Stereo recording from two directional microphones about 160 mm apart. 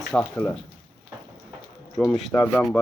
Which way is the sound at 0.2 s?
5° left (ahead or behind).